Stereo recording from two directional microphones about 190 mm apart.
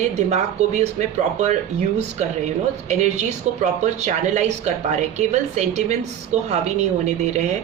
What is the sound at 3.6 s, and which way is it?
Speech, 40° right (ahead or behind).